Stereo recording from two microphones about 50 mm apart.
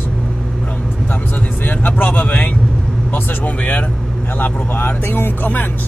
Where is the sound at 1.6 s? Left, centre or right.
Left.